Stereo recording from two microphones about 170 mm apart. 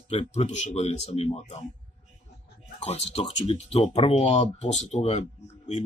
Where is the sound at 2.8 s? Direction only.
35° left (ahead or behind).